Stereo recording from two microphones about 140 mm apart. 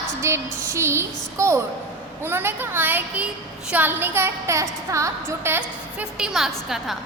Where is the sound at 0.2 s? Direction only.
20° right (ahead or behind).